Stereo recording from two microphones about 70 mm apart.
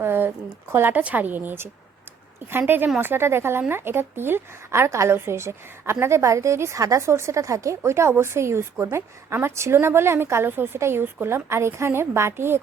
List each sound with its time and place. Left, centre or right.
0.0 s a woman's voice: right